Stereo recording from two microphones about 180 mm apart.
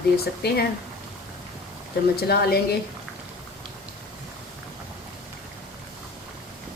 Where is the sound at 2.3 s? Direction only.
60° left (ahead or behind).